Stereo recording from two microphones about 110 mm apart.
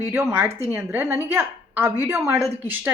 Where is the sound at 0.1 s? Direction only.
25° right (ahead or behind).